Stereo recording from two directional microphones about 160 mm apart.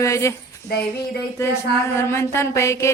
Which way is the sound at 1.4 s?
15° left (ahead or behind).